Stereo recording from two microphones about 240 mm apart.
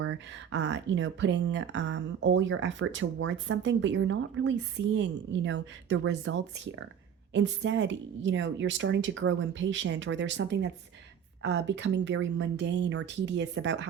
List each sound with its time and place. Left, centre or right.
0.0 s speech: right